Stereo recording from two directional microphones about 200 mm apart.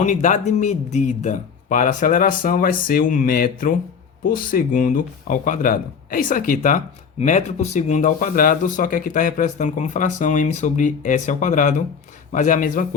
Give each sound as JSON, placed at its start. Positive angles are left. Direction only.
{"t": 0.0, "sound": "speech", "side_deg": 40}